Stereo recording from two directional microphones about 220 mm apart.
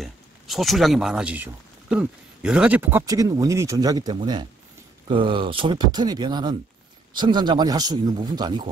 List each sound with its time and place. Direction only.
0.0 s speech: centre (ahead or behind); by 8.6 s 20° right (ahead or behind)